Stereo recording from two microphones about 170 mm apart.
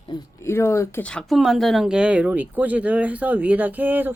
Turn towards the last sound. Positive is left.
turn(degrees=-10)  # may be behind; listen again after turning